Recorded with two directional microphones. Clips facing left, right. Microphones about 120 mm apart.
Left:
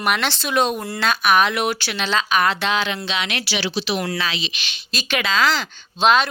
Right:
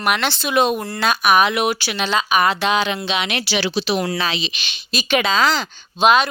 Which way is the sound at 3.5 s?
55° right (ahead or behind).